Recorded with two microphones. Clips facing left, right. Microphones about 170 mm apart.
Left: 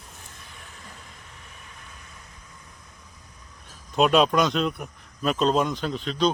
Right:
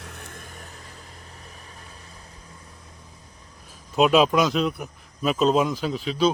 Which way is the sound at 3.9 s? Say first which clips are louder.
Right 1 dB; centre (ahead or behind).